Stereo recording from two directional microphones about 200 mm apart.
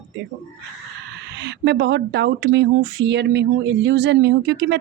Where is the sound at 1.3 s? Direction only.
60° right (ahead or behind).